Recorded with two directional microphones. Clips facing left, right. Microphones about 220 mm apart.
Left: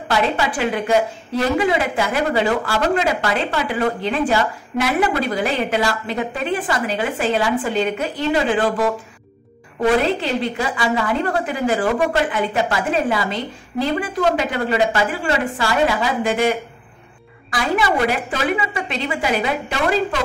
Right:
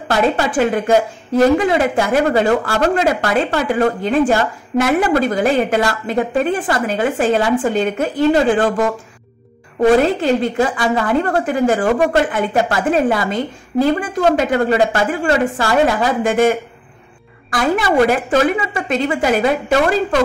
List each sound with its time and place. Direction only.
0.1 s a woman's voice: 50° right (ahead or behind)